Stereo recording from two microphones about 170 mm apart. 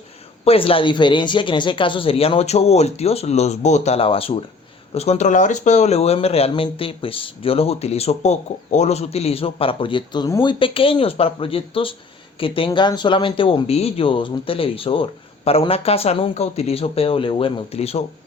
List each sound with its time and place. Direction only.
0.4 s speech: 35° left (ahead or behind)